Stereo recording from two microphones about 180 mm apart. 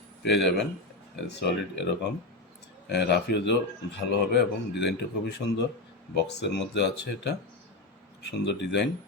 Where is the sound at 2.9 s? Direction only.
70° left (ahead or behind).